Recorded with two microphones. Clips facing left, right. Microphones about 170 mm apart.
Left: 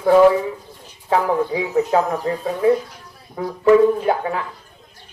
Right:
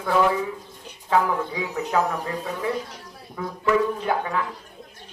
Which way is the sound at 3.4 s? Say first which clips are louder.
Left 9 dB; 35° left (ahead or behind).